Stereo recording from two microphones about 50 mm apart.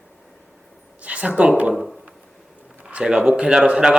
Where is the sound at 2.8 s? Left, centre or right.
Right.